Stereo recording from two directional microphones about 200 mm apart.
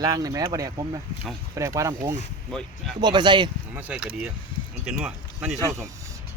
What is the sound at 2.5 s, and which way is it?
Speech, centre (ahead or behind).